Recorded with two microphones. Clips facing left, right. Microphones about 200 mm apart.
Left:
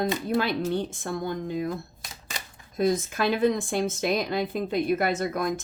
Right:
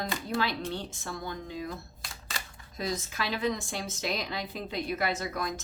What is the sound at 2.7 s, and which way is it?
A woman's voice, 55° left (ahead or behind).